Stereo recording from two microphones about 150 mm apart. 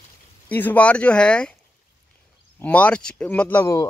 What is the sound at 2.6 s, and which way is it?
Speech, 10° left (ahead or behind).